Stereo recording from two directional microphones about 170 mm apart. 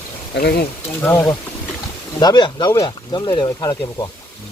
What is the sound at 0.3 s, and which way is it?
Speech, 65° left (ahead or behind).